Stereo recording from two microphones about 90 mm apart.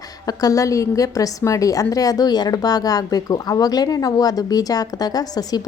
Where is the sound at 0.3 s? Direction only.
40° left (ahead or behind).